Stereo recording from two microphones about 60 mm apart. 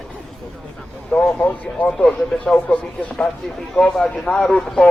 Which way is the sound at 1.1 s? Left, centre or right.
Centre.